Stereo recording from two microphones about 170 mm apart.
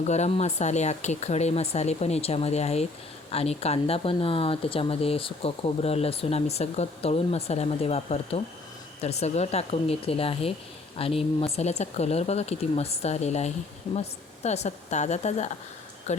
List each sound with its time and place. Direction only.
0.1 s speech: 40° left (ahead or behind)